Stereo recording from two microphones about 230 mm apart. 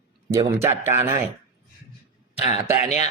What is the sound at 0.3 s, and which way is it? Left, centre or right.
Speech, centre.